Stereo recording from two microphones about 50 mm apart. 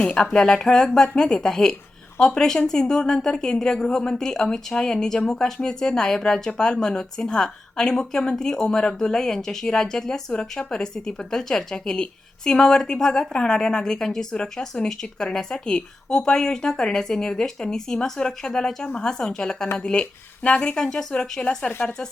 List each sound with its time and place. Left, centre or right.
0.0 s speech: centre
20.8 s speech: centre
21.1 s speech: centre
21.7 s speech: left